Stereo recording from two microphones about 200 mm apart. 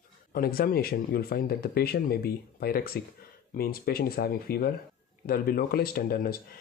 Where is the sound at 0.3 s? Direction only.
50° left (ahead or behind).